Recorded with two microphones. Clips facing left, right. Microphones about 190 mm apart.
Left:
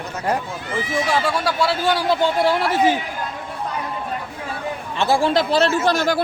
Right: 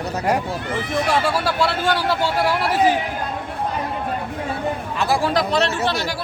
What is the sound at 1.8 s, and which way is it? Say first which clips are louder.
Speech: left 1 dB; 15° left (ahead or behind).